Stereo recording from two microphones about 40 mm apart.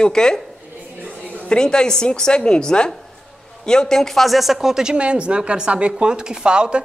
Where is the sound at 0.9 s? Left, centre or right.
Right.